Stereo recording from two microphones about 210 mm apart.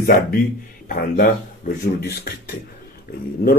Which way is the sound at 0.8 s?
45° left (ahead or behind).